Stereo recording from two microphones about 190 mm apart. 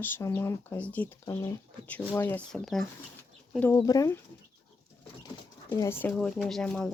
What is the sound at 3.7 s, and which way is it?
Speech, 20° left (ahead or behind).